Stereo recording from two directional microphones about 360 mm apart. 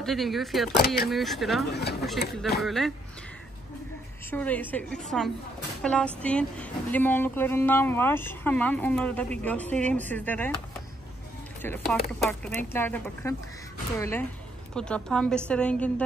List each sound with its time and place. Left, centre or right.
0.0 s speech: centre
1.7 s speech: left
2.6 s speech: centre
4.3 s speech: centre